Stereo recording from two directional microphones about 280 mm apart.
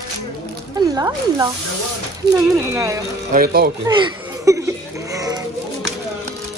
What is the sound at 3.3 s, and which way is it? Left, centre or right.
Speech, right.